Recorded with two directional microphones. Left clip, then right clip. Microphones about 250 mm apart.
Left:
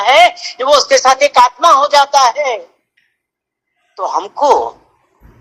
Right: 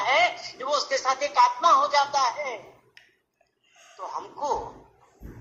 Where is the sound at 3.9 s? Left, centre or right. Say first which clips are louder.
Left 18 dB; left.